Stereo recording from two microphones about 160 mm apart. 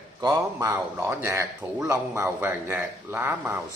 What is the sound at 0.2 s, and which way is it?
A man's voice, 20° right (ahead or behind).